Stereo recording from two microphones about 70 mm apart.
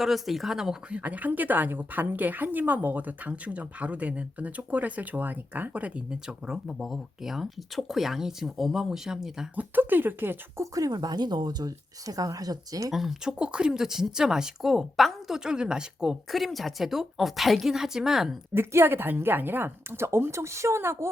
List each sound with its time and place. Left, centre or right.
0.0 s speech: centre
6.7 s speech: centre
9.6 s speech: right
10.6 s speech: right
12.9 s speech: centre
16.3 s speech: centre
18.5 s a woman's voice: right